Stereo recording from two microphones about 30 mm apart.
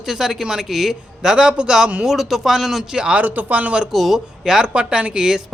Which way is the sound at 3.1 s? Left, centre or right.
Right.